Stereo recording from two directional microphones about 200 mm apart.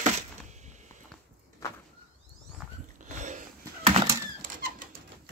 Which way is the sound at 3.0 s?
35° right (ahead or behind).